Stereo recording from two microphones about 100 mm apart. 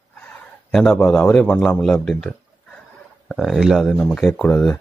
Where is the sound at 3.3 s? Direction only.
Centre (ahead or behind).